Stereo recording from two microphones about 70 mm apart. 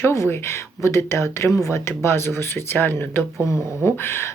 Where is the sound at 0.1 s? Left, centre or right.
Left.